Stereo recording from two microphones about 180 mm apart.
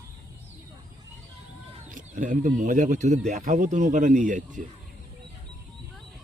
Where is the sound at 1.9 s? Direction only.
45° right (ahead or behind).